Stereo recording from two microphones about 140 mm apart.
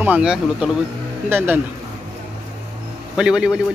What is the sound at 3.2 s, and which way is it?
Speech, 5° right (ahead or behind).